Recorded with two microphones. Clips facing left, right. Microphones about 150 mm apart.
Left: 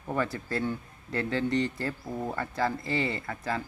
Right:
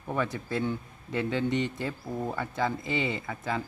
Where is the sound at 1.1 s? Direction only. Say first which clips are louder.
Even; 15° right (ahead or behind).